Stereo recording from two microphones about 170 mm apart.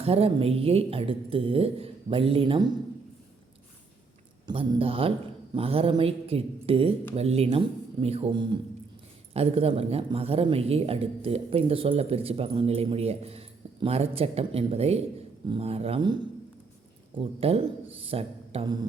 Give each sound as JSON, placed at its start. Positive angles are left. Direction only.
{"t": 0.0, "sound": "speech", "side_deg": -35}
{"t": 4.4, "sound": "speech", "side_deg": -30}
{"t": 8.3, "sound": "speech", "side_deg": -25}
{"t": 17.4, "sound": "speech", "side_deg": -35}